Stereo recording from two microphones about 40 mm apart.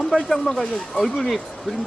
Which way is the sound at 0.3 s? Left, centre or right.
Centre.